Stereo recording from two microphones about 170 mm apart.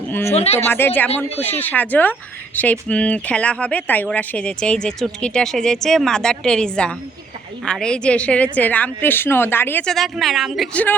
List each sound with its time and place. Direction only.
0.3 s speech: 40° left (ahead or behind)
0.7 s speech: 10° left (ahead or behind)